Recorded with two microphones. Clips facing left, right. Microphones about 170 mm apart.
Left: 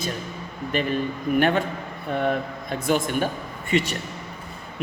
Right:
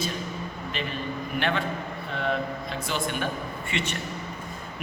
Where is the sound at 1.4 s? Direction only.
45° left (ahead or behind).